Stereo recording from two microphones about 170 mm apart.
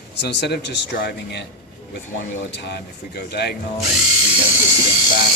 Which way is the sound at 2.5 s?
85° left.